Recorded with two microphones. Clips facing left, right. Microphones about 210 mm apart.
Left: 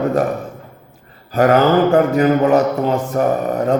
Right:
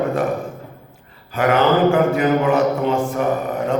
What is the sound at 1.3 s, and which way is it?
Mantra, 40° left (ahead or behind).